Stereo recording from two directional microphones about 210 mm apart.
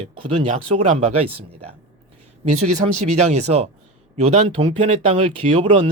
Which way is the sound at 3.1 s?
35° right (ahead or behind).